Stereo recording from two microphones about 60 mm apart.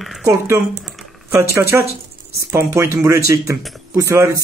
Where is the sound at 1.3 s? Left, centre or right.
Right.